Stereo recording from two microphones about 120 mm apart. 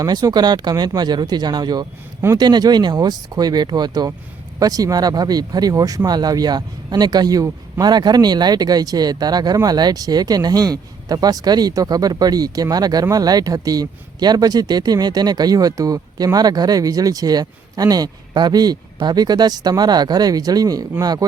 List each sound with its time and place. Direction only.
0.0 s speech: 30° right (ahead or behind)